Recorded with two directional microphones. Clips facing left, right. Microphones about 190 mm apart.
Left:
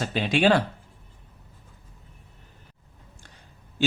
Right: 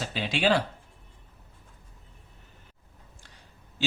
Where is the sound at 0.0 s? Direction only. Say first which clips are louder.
Left 5 dB; 50° left (ahead or behind).